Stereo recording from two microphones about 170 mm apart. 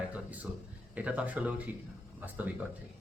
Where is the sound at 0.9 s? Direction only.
10° right (ahead or behind).